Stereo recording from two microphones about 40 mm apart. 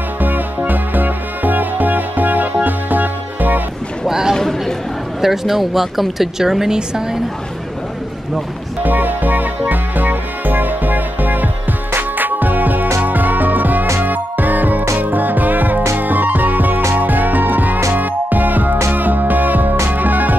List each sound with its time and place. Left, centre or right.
0.2 s music: right
4.1 s a sound: centre
4.4 s chatter: centre
5.2 s speech: centre
8.8 s music: right